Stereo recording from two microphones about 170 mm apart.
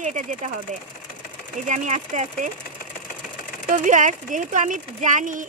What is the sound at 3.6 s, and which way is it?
Speech, 50° right (ahead or behind).